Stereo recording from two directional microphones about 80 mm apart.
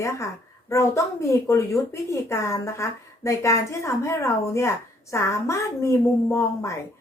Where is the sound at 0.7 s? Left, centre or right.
Left.